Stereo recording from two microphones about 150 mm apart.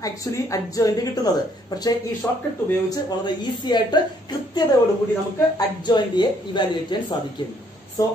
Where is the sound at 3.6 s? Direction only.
30° left (ahead or behind).